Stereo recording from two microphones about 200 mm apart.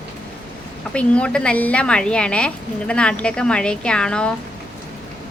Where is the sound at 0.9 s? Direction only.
5° left (ahead or behind).